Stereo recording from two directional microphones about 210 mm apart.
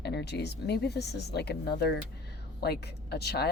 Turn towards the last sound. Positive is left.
turn(degrees=50)  # may be behind; listen again after turning